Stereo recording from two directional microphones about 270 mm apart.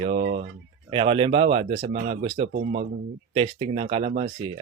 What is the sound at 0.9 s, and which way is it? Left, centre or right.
Speech, centre.